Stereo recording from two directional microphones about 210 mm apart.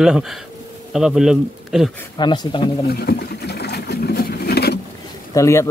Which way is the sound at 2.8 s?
50° left (ahead or behind).